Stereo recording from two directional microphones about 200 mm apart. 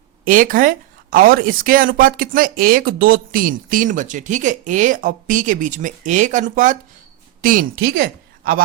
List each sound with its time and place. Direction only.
0.3 s a woman's voice: 45° right (ahead or behind)